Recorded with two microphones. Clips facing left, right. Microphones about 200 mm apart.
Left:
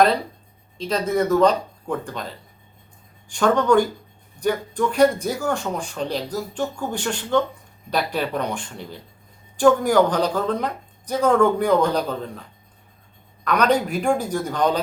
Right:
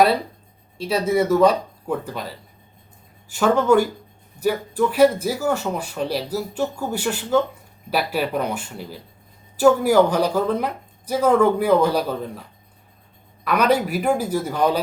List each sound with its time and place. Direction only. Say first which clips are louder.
0.8 s speech: right 2 dB; 10° right (ahead or behind)